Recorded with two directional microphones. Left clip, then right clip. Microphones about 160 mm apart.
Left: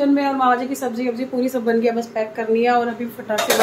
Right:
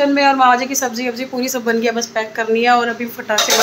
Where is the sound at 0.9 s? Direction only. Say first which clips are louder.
Right 1 dB; 5° left (ahead or behind).